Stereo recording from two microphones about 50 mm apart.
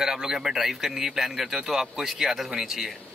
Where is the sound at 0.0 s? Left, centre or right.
Centre.